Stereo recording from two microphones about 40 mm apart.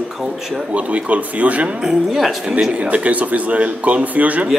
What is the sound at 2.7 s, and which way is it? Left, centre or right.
Speech, right.